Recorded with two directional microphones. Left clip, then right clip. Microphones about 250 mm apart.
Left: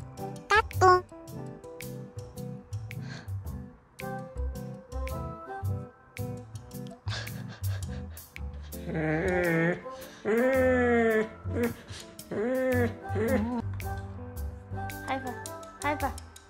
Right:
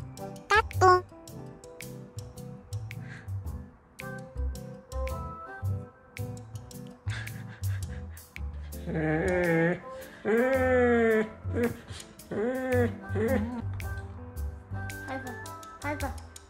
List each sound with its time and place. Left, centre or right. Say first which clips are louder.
0.2 s music: even; centre
4.0 s music: left 3 dB; centre
7.1 s music: left 2 dB; centre
8.4 s music: left 1 dB; centre